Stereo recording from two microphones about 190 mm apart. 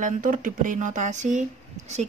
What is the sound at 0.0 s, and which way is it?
Speech, 45° right (ahead or behind).